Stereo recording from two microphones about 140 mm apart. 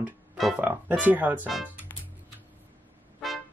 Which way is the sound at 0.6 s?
10° right (ahead or behind).